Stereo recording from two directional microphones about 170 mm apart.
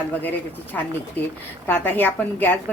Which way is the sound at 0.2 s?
10° left (ahead or behind).